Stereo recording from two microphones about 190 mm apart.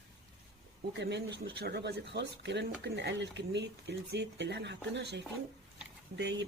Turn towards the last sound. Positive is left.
turn(degrees=-70)  # may be behind; listen again after turning